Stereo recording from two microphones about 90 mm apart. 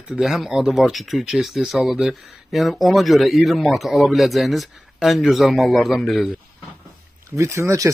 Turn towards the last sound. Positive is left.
turn(degrees=-35)  # may be behind; listen again after turning